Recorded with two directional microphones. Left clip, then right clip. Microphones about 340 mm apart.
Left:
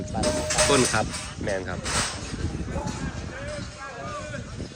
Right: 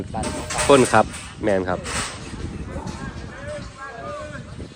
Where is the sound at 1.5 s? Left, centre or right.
Right.